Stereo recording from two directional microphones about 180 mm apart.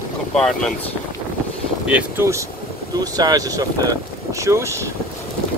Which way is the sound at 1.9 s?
10° right (ahead or behind).